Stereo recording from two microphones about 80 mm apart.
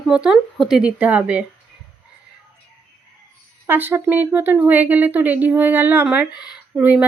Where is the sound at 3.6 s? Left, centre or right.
Right.